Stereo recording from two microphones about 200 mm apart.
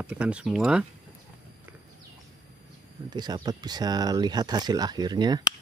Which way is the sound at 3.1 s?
20° right (ahead or behind).